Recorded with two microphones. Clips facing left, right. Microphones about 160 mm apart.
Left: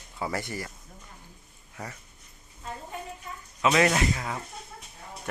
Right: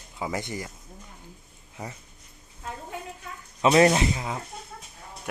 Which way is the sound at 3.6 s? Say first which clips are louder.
Right 4 dB; 30° right (ahead or behind).